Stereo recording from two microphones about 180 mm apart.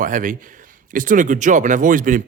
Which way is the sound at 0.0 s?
45° right (ahead or behind).